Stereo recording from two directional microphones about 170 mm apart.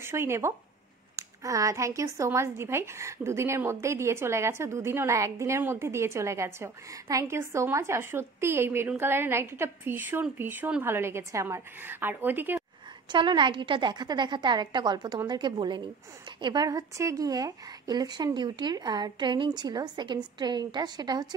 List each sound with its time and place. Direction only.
0.0 s a woman's voice: 15° right (ahead or behind)
13.1 s a woman's voice: 25° right (ahead or behind)